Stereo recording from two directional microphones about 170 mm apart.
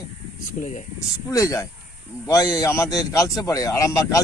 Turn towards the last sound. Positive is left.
turn(degrees=20)  # may be behind; listen again after turning